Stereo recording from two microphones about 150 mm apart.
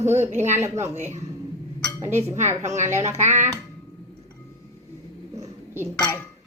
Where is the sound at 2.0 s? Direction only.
20° right (ahead or behind).